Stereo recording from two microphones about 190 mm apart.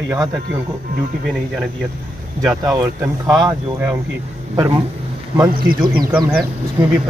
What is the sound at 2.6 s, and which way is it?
Speech, 20° right (ahead or behind).